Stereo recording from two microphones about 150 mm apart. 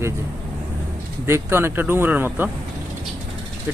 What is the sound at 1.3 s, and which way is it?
Speech, 15° right (ahead or behind).